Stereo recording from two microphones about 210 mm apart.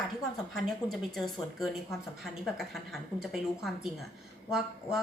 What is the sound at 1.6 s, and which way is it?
Speech, centre (ahead or behind).